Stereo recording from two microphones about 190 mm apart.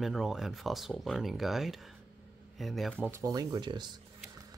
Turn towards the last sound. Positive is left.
turn(degrees=-25)  # may be behind; listen again after turning